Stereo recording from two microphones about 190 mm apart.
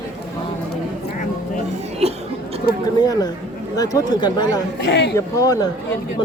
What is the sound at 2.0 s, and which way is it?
Speech, 35° right (ahead or behind).